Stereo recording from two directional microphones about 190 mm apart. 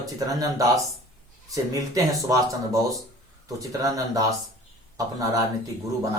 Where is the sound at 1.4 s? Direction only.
20° right (ahead or behind).